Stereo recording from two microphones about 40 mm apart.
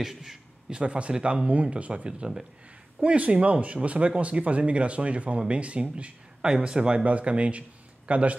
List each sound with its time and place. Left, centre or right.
0.0 s a man's voice: centre
0.7 s speech: right
1.5 s speech: right